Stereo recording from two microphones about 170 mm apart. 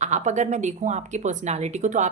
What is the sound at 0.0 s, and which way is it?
A woman's voice, 45° right (ahead or behind).